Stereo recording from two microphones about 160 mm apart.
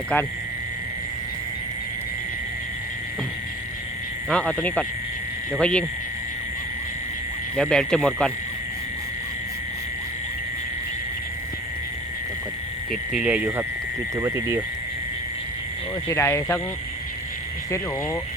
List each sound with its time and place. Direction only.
4.3 s speech: 5° left (ahead or behind)
7.5 s speech: 5° left (ahead or behind)
12.9 s speech: 5° right (ahead or behind)
14.2 s speech: 20° right (ahead or behind)
16.0 s speech: 15° left (ahead or behind)